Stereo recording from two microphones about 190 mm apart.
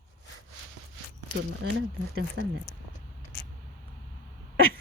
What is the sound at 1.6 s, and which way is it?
Speech, 75° right (ahead or behind).